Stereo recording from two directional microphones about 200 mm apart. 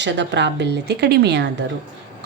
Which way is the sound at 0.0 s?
60° right (ahead or behind).